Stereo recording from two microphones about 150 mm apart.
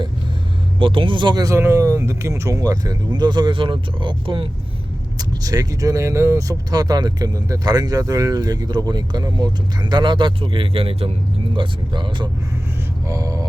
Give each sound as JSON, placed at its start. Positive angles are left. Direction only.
{"t": 0.8, "sound": "speech", "side_deg": -35}